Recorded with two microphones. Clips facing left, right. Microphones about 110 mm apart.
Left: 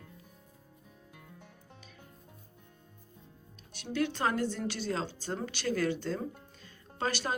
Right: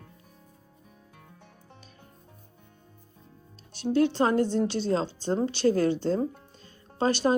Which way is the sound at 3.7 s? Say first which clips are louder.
Right 9 dB; 30° right (ahead or behind).